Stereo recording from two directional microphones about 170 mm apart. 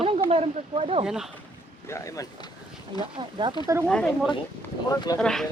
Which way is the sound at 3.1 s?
30° right (ahead or behind).